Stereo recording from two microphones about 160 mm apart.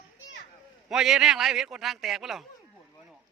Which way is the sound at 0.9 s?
5° right (ahead or behind).